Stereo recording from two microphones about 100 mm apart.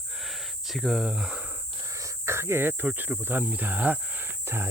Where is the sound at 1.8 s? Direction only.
35° right (ahead or behind).